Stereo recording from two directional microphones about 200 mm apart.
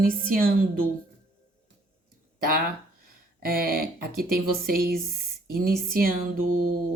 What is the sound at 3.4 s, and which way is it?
Speech, 45° right (ahead or behind).